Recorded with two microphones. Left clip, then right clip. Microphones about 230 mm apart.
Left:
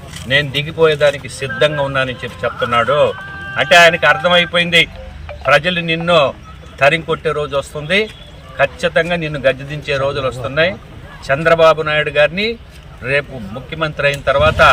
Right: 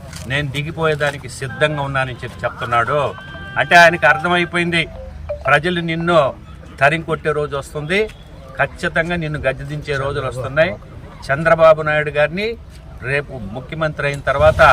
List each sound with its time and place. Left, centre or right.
0.3 s speech: right